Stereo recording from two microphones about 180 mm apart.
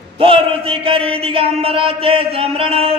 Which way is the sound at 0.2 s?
30° right (ahead or behind).